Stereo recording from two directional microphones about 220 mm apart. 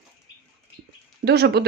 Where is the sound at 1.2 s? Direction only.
45° right (ahead or behind).